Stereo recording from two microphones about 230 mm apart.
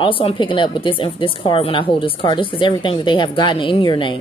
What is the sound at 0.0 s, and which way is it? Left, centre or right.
Speech, left.